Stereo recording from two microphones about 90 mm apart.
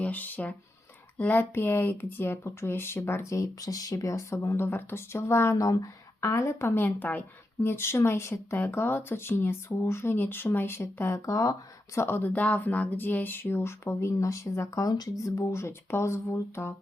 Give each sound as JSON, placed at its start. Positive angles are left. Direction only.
{"t": 0.0, "sound": "speech", "side_deg": 20}
{"t": 11.9, "sound": "speech", "side_deg": 25}